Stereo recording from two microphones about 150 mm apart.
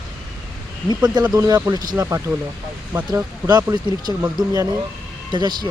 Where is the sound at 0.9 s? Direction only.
25° right (ahead or behind).